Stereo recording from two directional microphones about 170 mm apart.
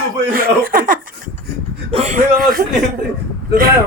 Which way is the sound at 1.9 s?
40° right (ahead or behind).